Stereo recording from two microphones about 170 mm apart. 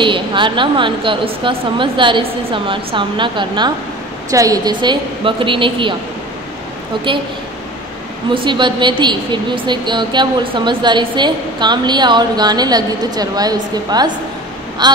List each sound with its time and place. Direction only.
0.0 s a woman's voice: 30° right (ahead or behind)
7.1 s a woman's voice: 30° right (ahead or behind)
8.4 s a woman's voice: 25° right (ahead or behind)